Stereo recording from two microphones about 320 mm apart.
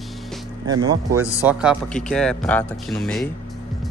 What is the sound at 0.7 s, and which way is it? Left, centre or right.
Speech, centre.